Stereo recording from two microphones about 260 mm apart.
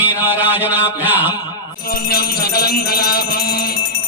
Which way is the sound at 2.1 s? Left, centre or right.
Left.